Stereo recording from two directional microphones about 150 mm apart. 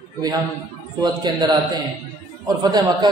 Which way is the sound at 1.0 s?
30° right (ahead or behind).